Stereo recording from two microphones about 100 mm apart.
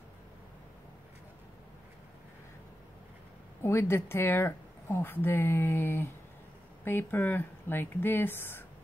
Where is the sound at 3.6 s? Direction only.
25° left (ahead or behind).